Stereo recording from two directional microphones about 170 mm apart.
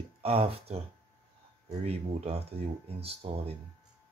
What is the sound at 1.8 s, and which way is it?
Speech, 35° right (ahead or behind).